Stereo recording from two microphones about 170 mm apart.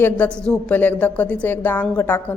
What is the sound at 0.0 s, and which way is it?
A woman's voice, 10° left (ahead or behind).